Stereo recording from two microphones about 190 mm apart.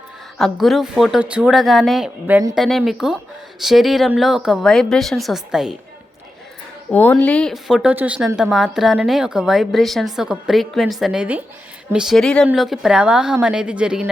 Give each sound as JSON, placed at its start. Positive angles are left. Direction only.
{"t": 0.3, "sound": "speech", "side_deg": 0}
{"t": 2.6, "sound": "speech", "side_deg": 0}
{"t": 6.9, "sound": "speech", "side_deg": 10}